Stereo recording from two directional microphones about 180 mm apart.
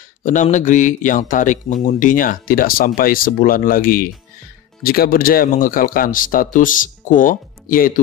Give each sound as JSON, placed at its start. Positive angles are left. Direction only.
{"t": 0.2, "sound": "speech", "side_deg": 45}